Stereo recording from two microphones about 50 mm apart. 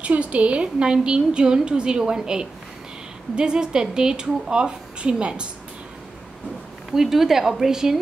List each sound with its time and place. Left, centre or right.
0.0 s a woman's voice: right
6.9 s a woman's voice: centre